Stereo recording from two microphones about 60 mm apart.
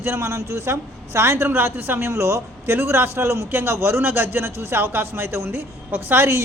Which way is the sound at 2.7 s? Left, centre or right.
Right.